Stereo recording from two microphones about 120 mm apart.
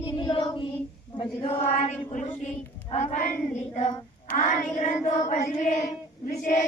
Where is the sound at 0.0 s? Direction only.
45° left (ahead or behind).